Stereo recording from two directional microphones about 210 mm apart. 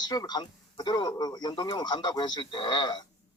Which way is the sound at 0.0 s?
20° left (ahead or behind).